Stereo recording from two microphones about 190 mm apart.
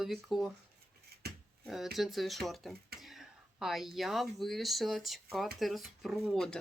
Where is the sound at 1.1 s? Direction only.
55° right (ahead or behind).